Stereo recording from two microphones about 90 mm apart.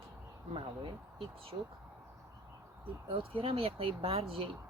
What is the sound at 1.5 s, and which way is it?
Speech, 60° right (ahead or behind).